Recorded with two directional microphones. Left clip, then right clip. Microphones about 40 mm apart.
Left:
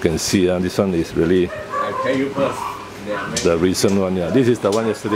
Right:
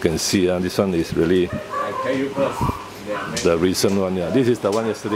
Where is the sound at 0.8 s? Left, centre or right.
Centre.